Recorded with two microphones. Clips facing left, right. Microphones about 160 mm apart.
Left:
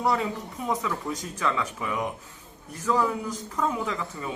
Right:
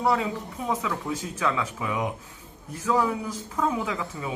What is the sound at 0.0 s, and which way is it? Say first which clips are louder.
Speech: right 1 dB; centre (ahead or behind).